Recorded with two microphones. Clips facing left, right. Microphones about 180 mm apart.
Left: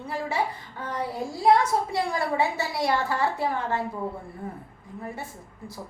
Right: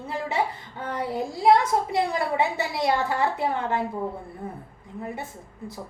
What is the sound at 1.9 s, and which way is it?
A woman's voice, 20° right (ahead or behind).